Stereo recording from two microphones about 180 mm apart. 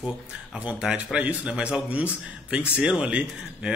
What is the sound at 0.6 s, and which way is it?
Speech, 5° right (ahead or behind).